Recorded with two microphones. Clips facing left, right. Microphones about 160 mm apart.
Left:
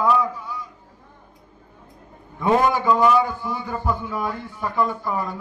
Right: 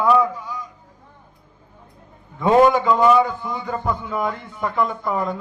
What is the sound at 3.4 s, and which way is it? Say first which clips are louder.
Speech: right 1 dB; 20° right (ahead or behind).